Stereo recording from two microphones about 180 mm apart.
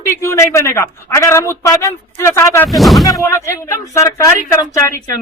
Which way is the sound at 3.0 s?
20° left (ahead or behind).